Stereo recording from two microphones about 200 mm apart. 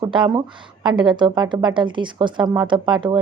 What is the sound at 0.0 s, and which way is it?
A woman's voice, 20° right (ahead or behind).